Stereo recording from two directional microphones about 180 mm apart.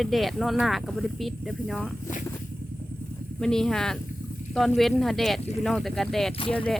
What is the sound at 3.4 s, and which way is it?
Speech, 5° left (ahead or behind).